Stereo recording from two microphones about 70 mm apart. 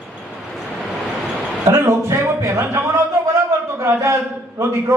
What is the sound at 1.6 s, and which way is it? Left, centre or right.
A man's voice, right.